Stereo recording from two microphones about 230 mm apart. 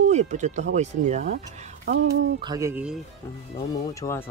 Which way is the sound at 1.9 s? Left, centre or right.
Right.